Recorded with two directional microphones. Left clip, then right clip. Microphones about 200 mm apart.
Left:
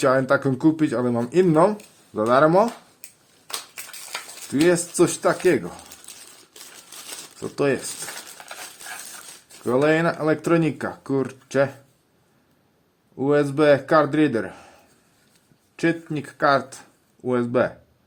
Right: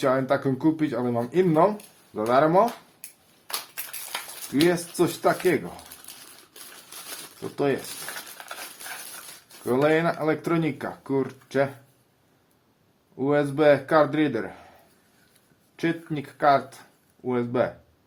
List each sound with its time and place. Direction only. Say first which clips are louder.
0.0 s speech: left 4 dB; 45° left (ahead or behind)
3.8 s a sound: left 1 dB; centre (ahead or behind)
4.9 s speech: left 3 dB; 45° left (ahead or behind)
7.5 s speech: left 3 dB; 45° left (ahead or behind)
8.4 s stir: even; 10° left (ahead or behind)
9.6 s speech: left 2 dB; 45° left (ahead or behind)
13.1 s speech: left 3 dB; 45° left (ahead or behind)
15.7 s speech: left 4 dB; 45° left (ahead or behind)